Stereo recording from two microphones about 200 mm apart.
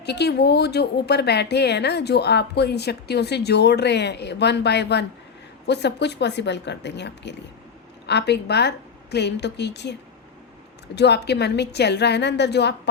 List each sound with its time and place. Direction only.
0.0 s a woman's voice: 55° left (ahead or behind)
10.9 s a woman's voice: 55° left (ahead or behind)